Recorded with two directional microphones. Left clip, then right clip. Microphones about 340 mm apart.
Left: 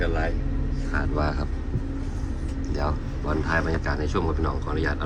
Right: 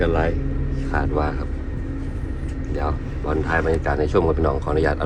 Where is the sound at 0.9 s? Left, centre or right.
Centre.